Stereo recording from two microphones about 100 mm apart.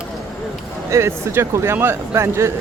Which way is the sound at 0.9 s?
30° right (ahead or behind).